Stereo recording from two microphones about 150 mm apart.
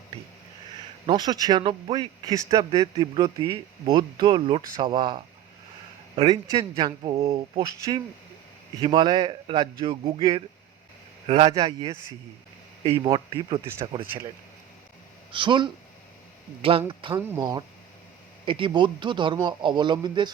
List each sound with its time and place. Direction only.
1.0 s speech: 25° right (ahead or behind)
6.2 s speech: 30° right (ahead or behind)
11.5 s speech: 30° right (ahead or behind)
15.3 s speech: 30° right (ahead or behind)
17.2 s speech: 20° right (ahead or behind)
18.4 s speech: 35° right (ahead or behind)